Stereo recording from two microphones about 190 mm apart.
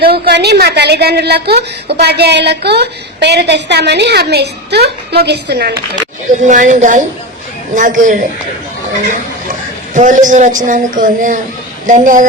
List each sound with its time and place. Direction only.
0.0 s a woman's voice: 55° right (ahead or behind)
5.9 s a woman's voice: 40° right (ahead or behind)
9.5 s a sound: 40° right (ahead or behind)
10.6 s a woman's voice: 40° right (ahead or behind)